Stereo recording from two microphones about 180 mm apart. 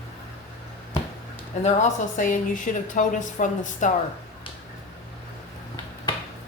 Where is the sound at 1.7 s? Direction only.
45° left (ahead or behind).